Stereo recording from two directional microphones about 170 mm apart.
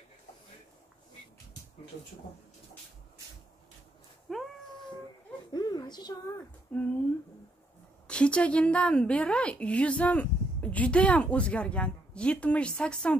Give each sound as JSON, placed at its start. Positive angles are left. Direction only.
{"t": 4.3, "sound": "cat", "side_deg": 0}
{"t": 5.5, "sound": "a sound", "side_deg": 25}
{"t": 6.7, "sound": "a woman's voice", "side_deg": 5}
{"t": 8.1, "sound": "a woman's voice", "side_deg": 5}